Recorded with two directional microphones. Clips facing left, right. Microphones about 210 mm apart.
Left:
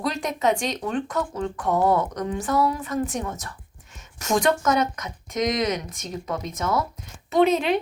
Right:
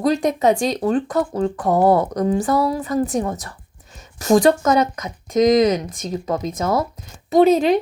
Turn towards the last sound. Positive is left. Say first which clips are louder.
# right 6 dB
turn(degrees=-40)  # may be behind; listen again after turning